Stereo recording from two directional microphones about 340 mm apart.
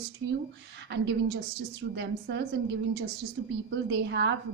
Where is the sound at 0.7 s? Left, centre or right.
Right.